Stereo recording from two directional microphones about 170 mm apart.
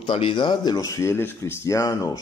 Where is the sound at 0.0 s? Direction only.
30° left (ahead or behind).